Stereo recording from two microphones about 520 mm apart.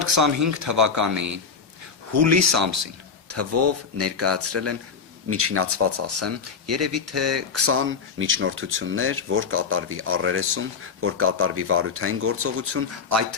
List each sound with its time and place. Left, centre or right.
0.0 s speech: right